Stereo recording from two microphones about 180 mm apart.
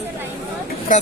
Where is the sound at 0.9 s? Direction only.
45° left (ahead or behind).